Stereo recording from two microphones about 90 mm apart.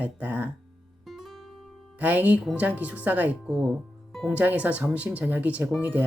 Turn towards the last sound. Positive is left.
turn(degrees=-15)  # may be behind; listen again after turning